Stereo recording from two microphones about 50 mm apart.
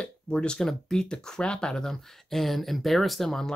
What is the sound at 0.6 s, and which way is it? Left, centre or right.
Speech, centre.